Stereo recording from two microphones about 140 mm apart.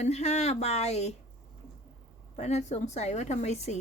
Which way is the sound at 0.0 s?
50° left (ahead or behind).